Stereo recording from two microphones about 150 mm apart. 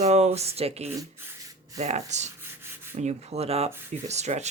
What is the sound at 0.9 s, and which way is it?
Rub, 25° right (ahead or behind).